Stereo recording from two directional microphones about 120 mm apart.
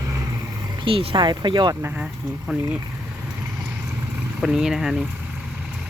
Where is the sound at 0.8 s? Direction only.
45° right (ahead or behind).